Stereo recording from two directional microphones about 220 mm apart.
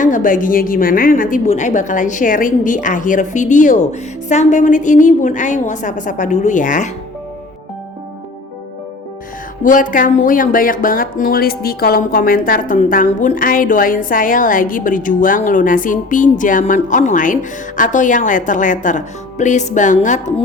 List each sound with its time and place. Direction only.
0.0 s speech: 35° left (ahead or behind)
9.6 s speech: 35° left (ahead or behind)